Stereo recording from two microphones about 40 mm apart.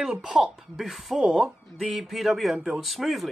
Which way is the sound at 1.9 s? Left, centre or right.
Centre.